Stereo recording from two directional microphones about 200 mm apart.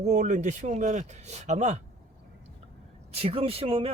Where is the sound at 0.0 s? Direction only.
35° right (ahead or behind).